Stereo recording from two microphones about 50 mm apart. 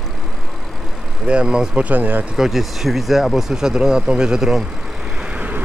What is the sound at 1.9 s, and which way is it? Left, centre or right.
Speech, right.